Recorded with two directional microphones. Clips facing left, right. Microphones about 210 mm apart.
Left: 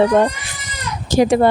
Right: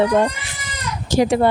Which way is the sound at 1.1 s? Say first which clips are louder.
Left 3 dB; 50° left (ahead or behind).